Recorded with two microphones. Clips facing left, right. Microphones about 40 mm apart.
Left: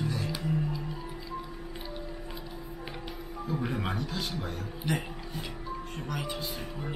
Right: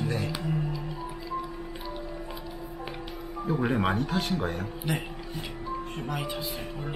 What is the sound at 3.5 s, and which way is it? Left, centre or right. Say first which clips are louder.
Speech: right 7 dB; right.